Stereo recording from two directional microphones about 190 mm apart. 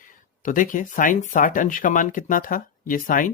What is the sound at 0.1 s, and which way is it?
Speech, 45° left (ahead or behind).